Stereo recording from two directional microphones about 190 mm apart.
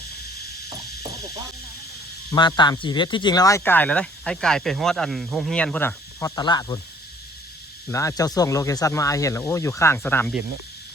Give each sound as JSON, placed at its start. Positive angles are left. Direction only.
{"t": 0.7, "sound": "cricket", "side_deg": -20}
{"t": 2.3, "sound": "speech", "side_deg": 20}
{"t": 7.9, "sound": "speech", "side_deg": 15}